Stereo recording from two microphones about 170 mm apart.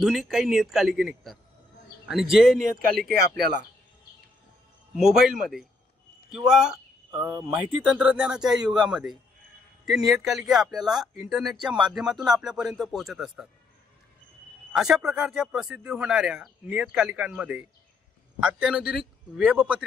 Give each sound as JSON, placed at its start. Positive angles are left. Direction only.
{"t": 0.0, "sound": "speech", "side_deg": 0}
{"t": 2.6, "sound": "speech", "side_deg": -55}
{"t": 4.9, "sound": "speech", "side_deg": -5}
{"t": 14.7, "sound": "speech", "side_deg": -5}